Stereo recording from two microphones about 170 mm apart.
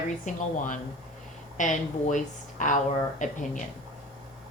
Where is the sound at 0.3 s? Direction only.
50° left (ahead or behind).